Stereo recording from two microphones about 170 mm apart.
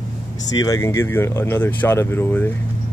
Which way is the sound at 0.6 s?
20° left (ahead or behind).